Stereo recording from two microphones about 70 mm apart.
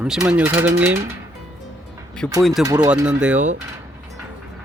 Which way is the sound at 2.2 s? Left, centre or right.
Centre.